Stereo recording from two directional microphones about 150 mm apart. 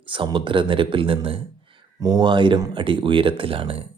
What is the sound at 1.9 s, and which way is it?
Speech, 25° right (ahead or behind).